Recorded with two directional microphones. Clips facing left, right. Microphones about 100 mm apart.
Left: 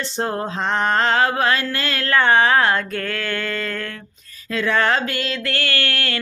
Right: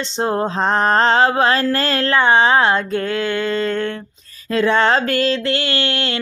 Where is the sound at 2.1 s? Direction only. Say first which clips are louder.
Right 1 dB; 20° right (ahead or behind).